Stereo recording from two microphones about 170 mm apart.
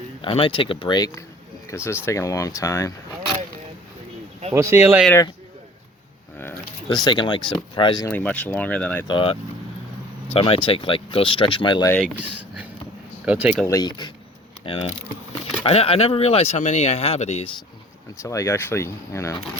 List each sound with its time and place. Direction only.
0.2 s speech: 30° left (ahead or behind)
4.5 s speech: 15° right (ahead or behind)
6.8 s speech: 25° left (ahead or behind)
8.0 s speech: 10° left (ahead or behind)
9.0 s speech: 30° left (ahead or behind)
12.0 s speech: 10° right (ahead or behind)
13.7 s speech: 25° left (ahead or behind); by 17.5 s 40° left (ahead or behind)
18.2 s speech: 15° left (ahead or behind)